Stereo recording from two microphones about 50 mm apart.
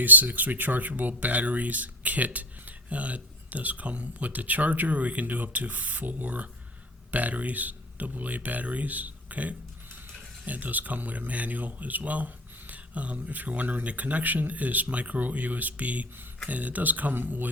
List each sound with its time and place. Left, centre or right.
0.0 s speech: right